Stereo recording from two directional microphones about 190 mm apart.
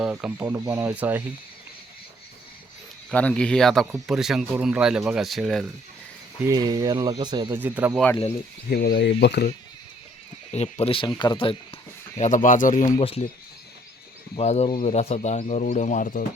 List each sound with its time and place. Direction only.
0.0 s speech: 10° right (ahead or behind)
3.1 s speech: 5° left (ahead or behind)
6.4 s speech: 20° right (ahead or behind)
7.6 s speech: 10° right (ahead or behind)
8.7 s speech: 65° left (ahead or behind)
10.5 s speech: 35° left (ahead or behind)
12.1 s speech: 40° left (ahead or behind)
13.0 s speech: 35° left (ahead or behind)
14.3 s speech: 35° left (ahead or behind)